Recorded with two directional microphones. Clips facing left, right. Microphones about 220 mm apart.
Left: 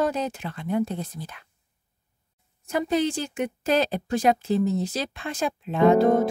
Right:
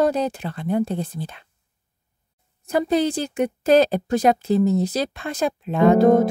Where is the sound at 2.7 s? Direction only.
35° right (ahead or behind).